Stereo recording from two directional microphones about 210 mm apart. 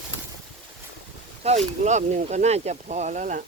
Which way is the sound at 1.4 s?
30° right (ahead or behind).